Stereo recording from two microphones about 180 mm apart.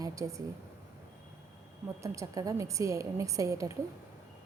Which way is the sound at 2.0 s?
20° right (ahead or behind).